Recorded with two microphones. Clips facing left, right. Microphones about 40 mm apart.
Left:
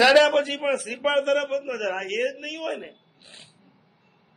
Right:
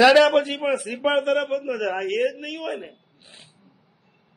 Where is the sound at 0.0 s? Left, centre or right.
Centre.